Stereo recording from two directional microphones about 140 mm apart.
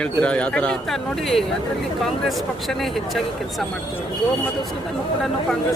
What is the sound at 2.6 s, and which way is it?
Speech, centre (ahead or behind).